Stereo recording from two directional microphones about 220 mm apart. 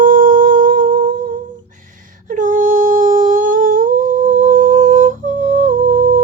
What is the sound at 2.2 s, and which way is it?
Humming, 35° right (ahead or behind).